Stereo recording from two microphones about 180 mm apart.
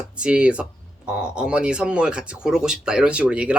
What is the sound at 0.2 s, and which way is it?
Speech, 5° right (ahead or behind).